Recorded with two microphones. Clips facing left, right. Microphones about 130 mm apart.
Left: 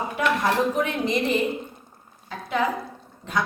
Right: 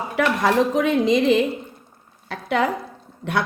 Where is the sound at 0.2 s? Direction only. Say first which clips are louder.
Right 4 dB; 90° right.